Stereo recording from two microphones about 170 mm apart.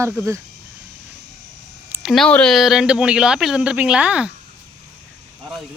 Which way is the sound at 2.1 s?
5° left (ahead or behind).